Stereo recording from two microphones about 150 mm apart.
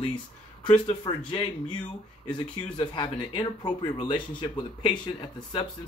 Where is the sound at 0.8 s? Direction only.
35° left (ahead or behind).